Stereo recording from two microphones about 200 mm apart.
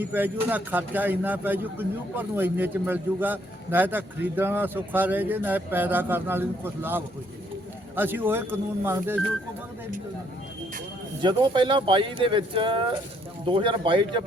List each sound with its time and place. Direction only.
0.0 s a man's voice: 10° right (ahead or behind)
11.2 s speech: 25° right (ahead or behind)